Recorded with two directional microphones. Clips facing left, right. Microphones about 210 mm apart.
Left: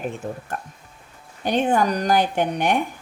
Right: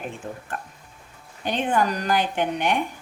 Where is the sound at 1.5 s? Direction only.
40° left (ahead or behind).